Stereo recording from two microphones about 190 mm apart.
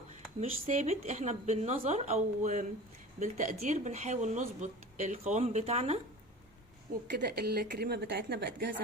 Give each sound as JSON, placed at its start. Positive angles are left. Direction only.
{"t": 0.3, "sound": "speech", "side_deg": -35}
{"t": 7.1, "sound": "a woman's voice", "side_deg": -55}